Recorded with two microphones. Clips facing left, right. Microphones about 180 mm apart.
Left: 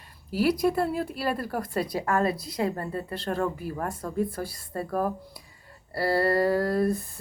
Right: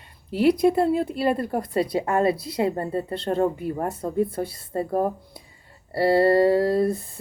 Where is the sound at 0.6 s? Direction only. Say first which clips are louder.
Right 6 dB; 25° right (ahead or behind).